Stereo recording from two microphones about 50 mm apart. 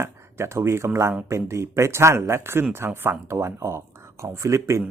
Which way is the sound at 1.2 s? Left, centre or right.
Right.